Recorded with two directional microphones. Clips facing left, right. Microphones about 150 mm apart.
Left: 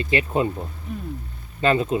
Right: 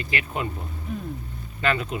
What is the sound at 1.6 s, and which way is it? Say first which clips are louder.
Speech: left 5 dB; 25° left (ahead or behind).